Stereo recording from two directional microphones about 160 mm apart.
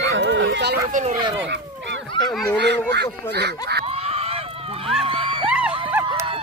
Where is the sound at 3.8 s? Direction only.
40° right (ahead or behind).